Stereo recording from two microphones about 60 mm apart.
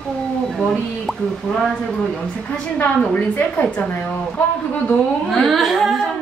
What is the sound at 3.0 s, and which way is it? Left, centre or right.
Speech, left.